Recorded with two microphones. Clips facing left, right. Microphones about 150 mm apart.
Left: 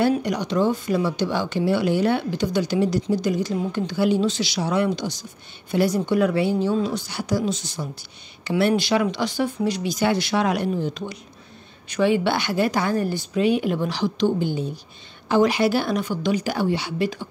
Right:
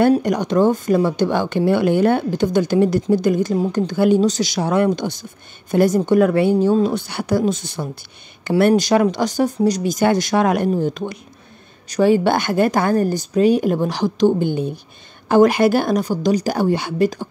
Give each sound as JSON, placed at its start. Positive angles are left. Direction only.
{"t": 0.1, "sound": "speech", "side_deg": -50}